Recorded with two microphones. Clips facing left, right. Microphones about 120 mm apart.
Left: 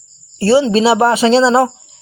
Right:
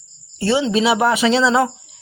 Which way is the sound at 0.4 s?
35° left (ahead or behind).